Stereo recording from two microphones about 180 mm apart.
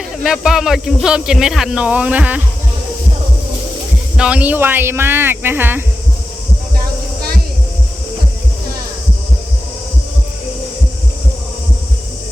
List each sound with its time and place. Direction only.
0.2 s speech: centre (ahead or behind)
4.2 s speech: 5° right (ahead or behind)
6.7 s a sound: 55° right (ahead or behind)